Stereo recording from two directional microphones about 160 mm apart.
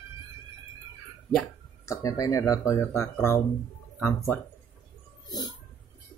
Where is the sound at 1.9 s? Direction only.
20° left (ahead or behind).